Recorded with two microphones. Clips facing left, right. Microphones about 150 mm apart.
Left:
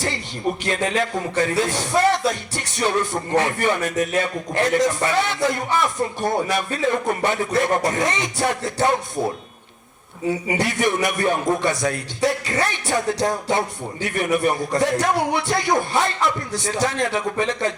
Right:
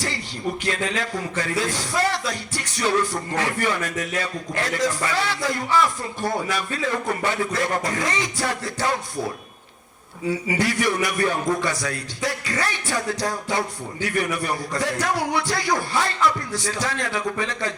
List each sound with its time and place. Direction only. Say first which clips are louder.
0.6 s a man's voice: left 4 dB; 20° left (ahead or behind)
10.2 s a man's voice: left 1 dB; 20° left (ahead or behind)